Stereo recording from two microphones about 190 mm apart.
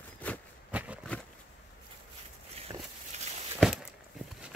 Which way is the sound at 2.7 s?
15° right (ahead or behind).